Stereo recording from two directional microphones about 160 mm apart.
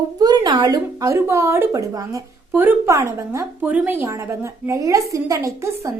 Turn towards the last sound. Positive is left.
turn(degrees=-20)  # may be behind; listen again after turning